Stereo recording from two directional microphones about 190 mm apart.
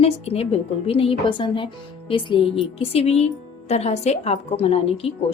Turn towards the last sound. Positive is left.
turn(degrees=30)  # may be behind; listen again after turning